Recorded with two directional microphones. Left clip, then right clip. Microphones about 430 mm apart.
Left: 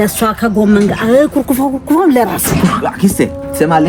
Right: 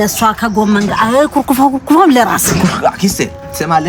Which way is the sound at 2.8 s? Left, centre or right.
Centre.